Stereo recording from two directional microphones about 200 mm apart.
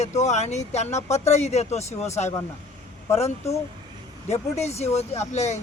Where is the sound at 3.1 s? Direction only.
30° left (ahead or behind).